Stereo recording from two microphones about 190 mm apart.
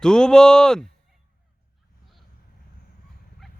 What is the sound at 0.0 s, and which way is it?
Speech, 5° left (ahead or behind).